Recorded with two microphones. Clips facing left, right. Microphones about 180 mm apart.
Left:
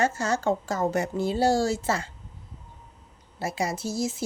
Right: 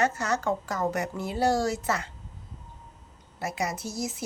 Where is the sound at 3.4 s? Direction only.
30° left (ahead or behind).